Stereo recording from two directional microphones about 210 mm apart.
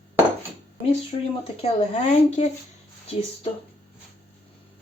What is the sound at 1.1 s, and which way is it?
Speech, 30° left (ahead or behind).